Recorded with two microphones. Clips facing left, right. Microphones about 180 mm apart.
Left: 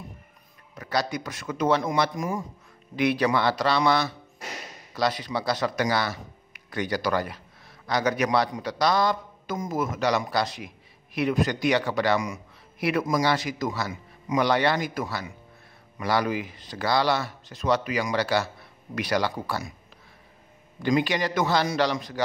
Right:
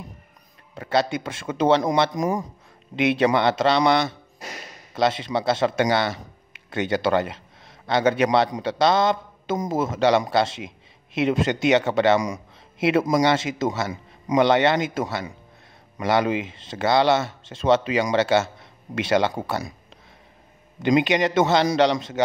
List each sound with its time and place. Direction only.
0.7 s speech: 25° right (ahead or behind)
3.0 s speech: 25° right (ahead or behind)
20.8 s speech: 20° right (ahead or behind)